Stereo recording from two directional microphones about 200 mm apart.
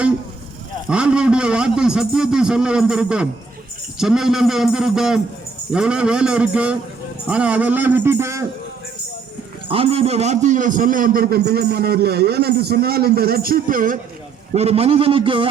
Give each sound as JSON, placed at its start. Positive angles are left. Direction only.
{"t": 0.9, "sound": "a man's voice", "side_deg": -5}
{"t": 9.6, "sound": "a man's voice", "side_deg": -30}
{"t": 14.5, "sound": "a man's voice", "side_deg": -30}